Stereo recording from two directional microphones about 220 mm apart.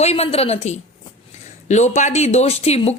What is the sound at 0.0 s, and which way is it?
Speech, 30° left (ahead or behind).